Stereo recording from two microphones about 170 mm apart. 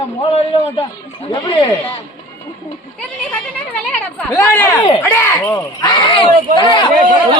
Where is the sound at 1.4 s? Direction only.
25° left (ahead or behind).